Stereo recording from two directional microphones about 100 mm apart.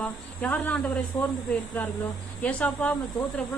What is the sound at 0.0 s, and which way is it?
Speech, 15° left (ahead or behind).